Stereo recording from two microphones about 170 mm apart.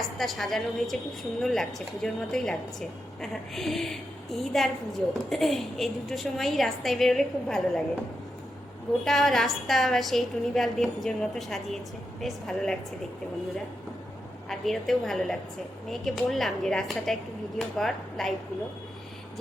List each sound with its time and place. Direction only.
0.0 s a woman's voice: centre (ahead or behind)
9.0 s a woman's voice: centre (ahead or behind)
14.5 s a woman's voice: centre (ahead or behind)